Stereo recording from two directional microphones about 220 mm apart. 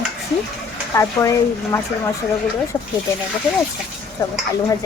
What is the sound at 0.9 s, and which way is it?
Speech, 15° left (ahead or behind).